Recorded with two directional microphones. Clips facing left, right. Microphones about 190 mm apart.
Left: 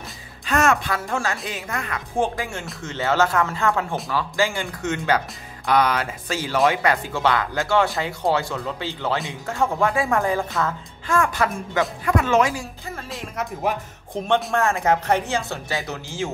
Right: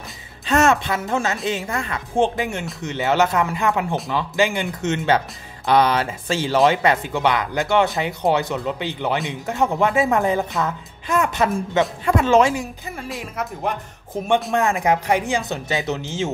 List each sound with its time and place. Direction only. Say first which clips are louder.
0.5 s speech: right 3 dB; 25° right (ahead or behind)
13.1 s speech: even; centre (ahead or behind)
14.5 s speech: right 1 dB; 15° right (ahead or behind)